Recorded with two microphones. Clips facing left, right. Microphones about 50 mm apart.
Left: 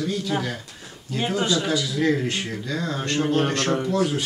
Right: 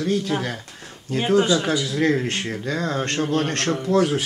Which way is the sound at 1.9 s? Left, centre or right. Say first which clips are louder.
Right 1 dB; right.